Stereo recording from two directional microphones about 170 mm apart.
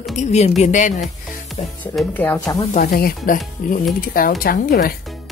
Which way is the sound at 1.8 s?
10° left (ahead or behind).